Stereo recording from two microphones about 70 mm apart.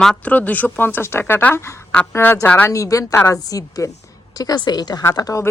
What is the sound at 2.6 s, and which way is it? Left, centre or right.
A woman's voice, left.